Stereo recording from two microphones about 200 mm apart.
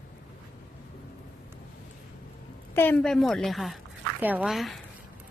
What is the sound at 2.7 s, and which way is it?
A woman's voice, 10° left (ahead or behind).